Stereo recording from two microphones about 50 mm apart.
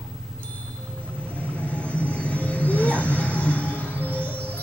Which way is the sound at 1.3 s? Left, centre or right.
Left.